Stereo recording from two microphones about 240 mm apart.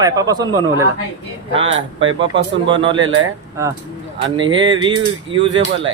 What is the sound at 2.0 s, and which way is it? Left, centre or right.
Speech, right.